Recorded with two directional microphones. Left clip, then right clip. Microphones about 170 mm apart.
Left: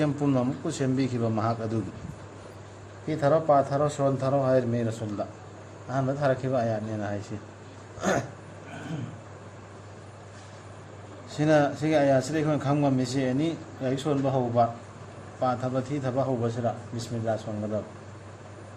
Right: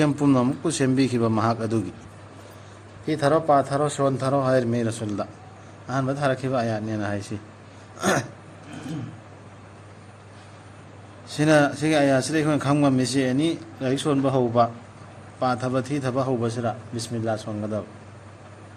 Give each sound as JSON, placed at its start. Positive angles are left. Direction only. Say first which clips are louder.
{"t": 0.0, "sound": "a man's voice", "louder": "right 5 dB", "side_deg": -40}
{"t": 3.1, "sound": "a man's voice", "louder": "right 3 dB", "side_deg": -40}
{"t": 7.9, "sound": "throat clearing", "louder": "right 4 dB", "side_deg": -35}
{"t": 11.3, "sound": "a man's voice", "louder": "right 4 dB", "side_deg": -45}